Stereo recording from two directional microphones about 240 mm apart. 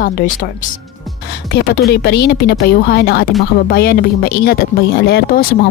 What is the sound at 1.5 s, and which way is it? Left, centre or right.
Speech, left.